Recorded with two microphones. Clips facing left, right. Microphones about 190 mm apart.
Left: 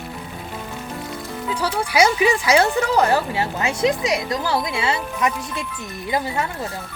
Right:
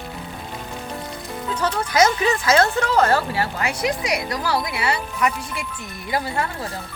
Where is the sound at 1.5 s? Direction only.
10° left (ahead or behind).